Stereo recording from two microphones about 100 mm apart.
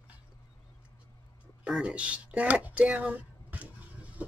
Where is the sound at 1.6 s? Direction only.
10° right (ahead or behind).